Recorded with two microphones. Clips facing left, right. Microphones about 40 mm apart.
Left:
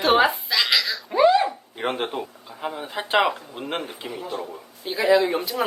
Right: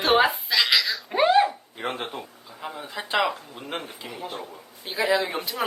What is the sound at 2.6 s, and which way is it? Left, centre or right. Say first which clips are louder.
Speech: left 5 dB; left.